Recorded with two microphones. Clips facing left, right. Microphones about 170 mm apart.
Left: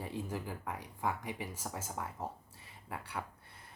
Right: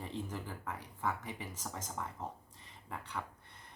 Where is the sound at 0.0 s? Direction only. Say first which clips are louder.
Left 2 dB; 10° left (ahead or behind).